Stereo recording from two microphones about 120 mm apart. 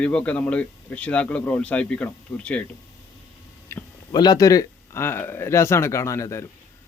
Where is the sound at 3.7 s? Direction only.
25° left (ahead or behind).